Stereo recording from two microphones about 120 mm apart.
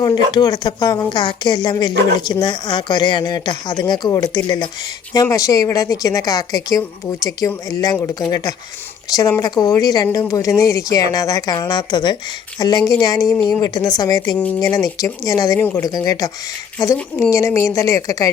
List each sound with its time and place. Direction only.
0.0 s a woman's voice: 35° left (ahead or behind)
9.4 s speech: 30° left (ahead or behind)
15.5 s a woman's voice: 15° left (ahead or behind)
15.8 s a woman's voice: 30° left (ahead or behind)